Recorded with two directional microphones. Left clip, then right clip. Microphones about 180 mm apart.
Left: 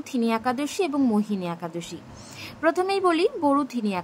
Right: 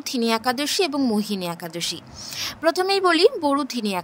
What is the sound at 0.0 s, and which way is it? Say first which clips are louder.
A woman's voice: right 3 dB; 45° right (ahead or behind).